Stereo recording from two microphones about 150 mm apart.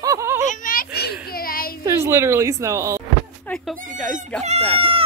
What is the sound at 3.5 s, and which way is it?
Neigh, 10° left (ahead or behind).